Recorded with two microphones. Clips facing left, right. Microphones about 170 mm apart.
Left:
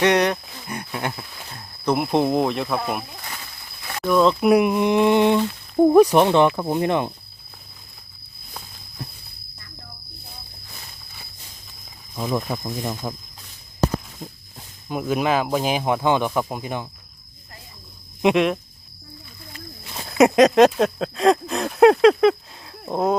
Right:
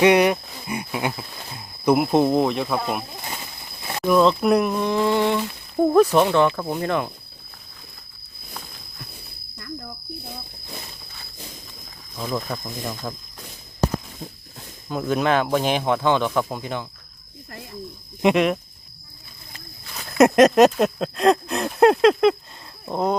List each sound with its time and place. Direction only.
0.0 s speech: 10° right (ahead or behind)
3.2 s a sound: 20° right (ahead or behind)
4.0 s speech: 5° right (ahead or behind); by 7.1 s 20° left (ahead or behind)
12.1 s speech: 10° left (ahead or behind)
14.8 s speech: 10° left (ahead or behind)
18.2 s speech: centre (ahead or behind)
20.1 s a sound: centre (ahead or behind)